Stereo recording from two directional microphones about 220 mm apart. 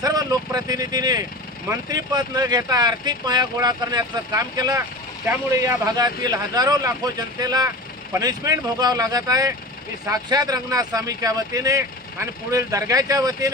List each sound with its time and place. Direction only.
0.0 s speech: 15° right (ahead or behind)